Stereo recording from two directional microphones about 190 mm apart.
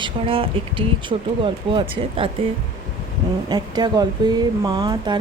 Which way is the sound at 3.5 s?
20° right (ahead or behind).